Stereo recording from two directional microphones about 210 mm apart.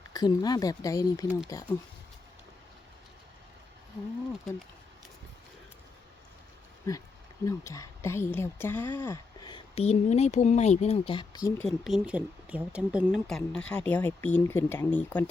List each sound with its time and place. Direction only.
0.1 s speech: 20° left (ahead or behind)
6.9 s a woman's voice: 15° left (ahead or behind)
11.8 s speech: centre (ahead or behind)